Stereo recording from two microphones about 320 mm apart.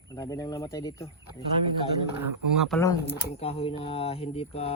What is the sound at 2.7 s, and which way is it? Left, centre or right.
Speech, centre.